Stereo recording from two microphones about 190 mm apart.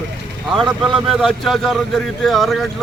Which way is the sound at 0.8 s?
Centre (ahead or behind).